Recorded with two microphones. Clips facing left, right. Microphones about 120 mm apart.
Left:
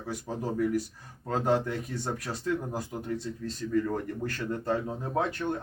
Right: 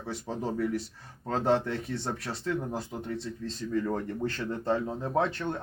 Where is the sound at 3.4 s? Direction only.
25° right (ahead or behind).